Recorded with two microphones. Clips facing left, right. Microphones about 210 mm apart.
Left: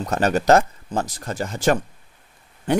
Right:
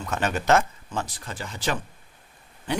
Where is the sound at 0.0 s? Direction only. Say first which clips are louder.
Left 7 dB; 40° left (ahead or behind).